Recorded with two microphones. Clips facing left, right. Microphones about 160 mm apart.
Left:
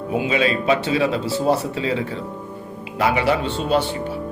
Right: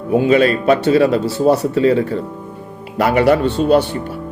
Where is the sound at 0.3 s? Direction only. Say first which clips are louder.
Right 6 dB; 45° right (ahead or behind).